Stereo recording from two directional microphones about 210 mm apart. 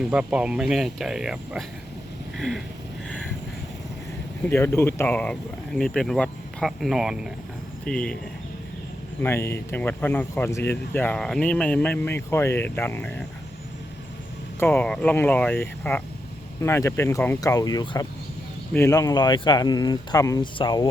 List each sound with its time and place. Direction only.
0.1 s speech: 5° right (ahead or behind)
4.4 s speech: 10° left (ahead or behind)
9.2 s speech: 10° left (ahead or behind)
14.6 s speech: 10° left (ahead or behind)